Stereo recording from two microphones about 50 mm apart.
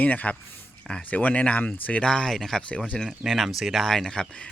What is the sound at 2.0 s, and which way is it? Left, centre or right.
Speech, centre.